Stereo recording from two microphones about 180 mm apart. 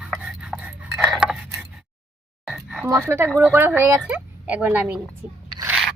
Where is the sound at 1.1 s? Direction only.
5° right (ahead or behind).